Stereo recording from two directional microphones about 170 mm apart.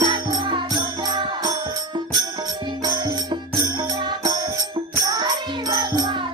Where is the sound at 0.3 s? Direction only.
25° right (ahead or behind).